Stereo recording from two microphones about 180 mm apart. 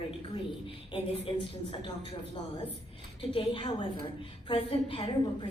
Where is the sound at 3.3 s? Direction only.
30° left (ahead or behind).